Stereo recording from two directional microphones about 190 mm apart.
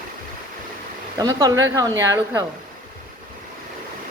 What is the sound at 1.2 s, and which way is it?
A woman's voice, 20° right (ahead or behind).